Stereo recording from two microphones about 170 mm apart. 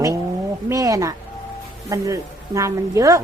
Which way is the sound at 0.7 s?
20° right (ahead or behind).